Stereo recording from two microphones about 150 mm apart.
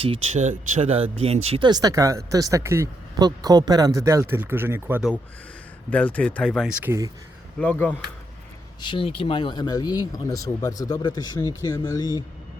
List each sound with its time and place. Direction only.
0.3 s speech: 50° right (ahead or behind); by 5.0 s 15° right (ahead or behind)
5.9 s speech: 10° left (ahead or behind)
6.6 s speech: 5° right (ahead or behind)
7.6 s speech: 10° left (ahead or behind)
8.8 s speech: 35° left (ahead or behind)